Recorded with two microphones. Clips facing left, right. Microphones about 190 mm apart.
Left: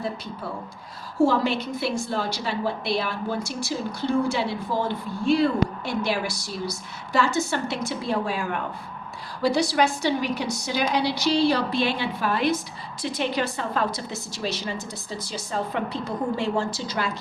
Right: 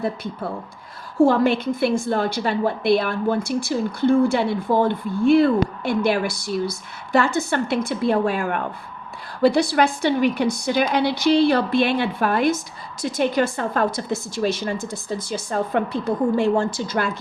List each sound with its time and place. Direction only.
1.2 s a woman's voice: 55° right (ahead or behind)